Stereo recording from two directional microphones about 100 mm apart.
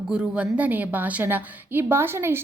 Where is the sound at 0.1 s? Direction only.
10° right (ahead or behind).